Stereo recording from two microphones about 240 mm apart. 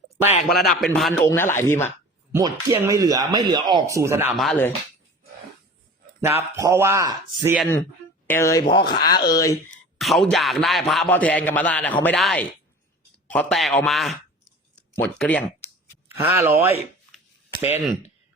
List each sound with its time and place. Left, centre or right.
0.4 s a man's voice: centre
2.3 s speech: centre
6.6 s speech: centre
8.3 s speech: centre
10.0 s a man's voice: centre
16.0 s speech: centre